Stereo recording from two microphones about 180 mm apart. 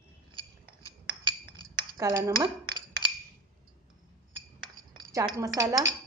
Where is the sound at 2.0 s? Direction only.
20° right (ahead or behind).